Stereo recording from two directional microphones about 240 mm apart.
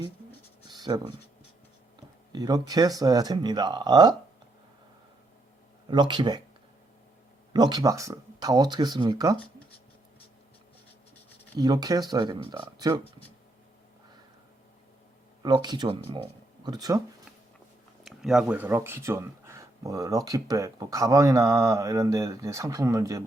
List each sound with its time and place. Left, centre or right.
0.7 s writing: centre
2.3 s speech: centre
5.9 s speech: centre
7.5 s speech: centre
11.6 s speech: centre
15.4 s speech: centre
18.0 s speech: centre